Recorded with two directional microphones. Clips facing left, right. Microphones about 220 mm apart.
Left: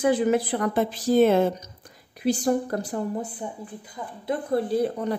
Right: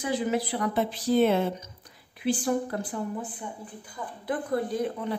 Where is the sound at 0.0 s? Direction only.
50° left (ahead or behind).